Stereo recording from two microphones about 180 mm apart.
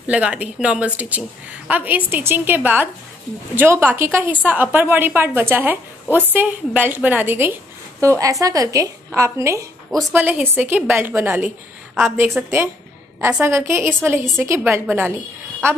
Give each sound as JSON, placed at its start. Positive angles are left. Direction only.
{"t": 0.0, "sound": "a woman's voice", "side_deg": -5}